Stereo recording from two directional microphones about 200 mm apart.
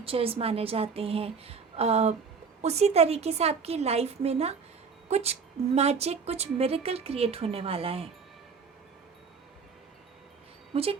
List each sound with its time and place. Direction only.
0.0 s a woman's voice: 30° right (ahead or behind)